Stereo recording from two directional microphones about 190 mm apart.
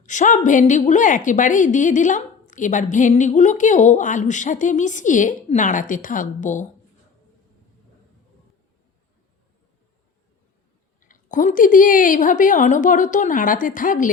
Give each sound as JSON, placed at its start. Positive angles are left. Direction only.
{"t": 0.0, "sound": "a woman's voice", "side_deg": 40}
{"t": 11.1, "sound": "a woman's voice", "side_deg": 45}